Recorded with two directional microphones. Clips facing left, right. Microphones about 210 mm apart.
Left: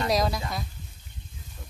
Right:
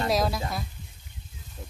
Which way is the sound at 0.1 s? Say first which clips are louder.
Left 1 dB; centre (ahead or behind).